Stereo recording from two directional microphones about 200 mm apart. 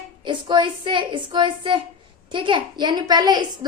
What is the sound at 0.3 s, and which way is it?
A woman's voice, 25° right (ahead or behind).